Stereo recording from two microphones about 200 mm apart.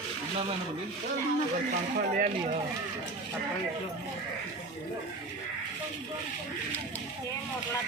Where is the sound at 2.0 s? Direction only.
40° right (ahead or behind).